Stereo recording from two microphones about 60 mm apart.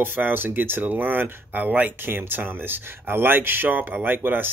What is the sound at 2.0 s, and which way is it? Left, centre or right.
Speech, right.